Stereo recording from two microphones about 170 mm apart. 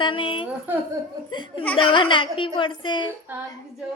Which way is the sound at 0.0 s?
30° left (ahead or behind).